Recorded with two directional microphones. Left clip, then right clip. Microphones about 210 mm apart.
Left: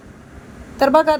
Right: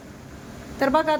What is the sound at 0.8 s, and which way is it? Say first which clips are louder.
Speech: left 7 dB; 20° left (ahead or behind).